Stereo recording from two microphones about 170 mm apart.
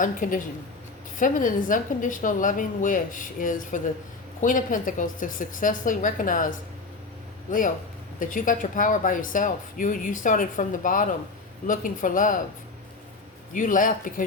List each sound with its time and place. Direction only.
0.0 s speech: 50° left (ahead or behind)
8.2 s speech: 50° left (ahead or behind)
13.5 s speech: 50° left (ahead or behind)